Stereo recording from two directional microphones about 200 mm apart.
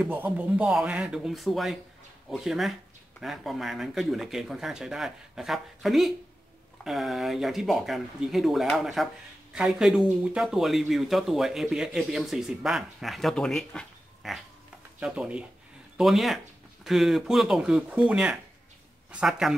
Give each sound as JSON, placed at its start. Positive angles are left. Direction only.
{"t": 0.0, "sound": "speech", "side_deg": -10}